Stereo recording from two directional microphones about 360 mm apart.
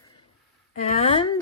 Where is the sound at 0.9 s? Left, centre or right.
Centre.